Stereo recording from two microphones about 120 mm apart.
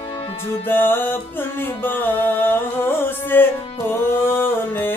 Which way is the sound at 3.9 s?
20° left (ahead or behind).